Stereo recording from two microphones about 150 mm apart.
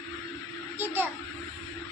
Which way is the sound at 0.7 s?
15° right (ahead or behind).